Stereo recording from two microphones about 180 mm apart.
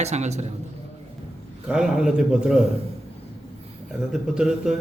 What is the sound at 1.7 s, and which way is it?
Speech, 5° right (ahead or behind).